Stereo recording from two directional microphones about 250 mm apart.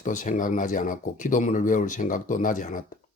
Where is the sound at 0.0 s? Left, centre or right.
Left.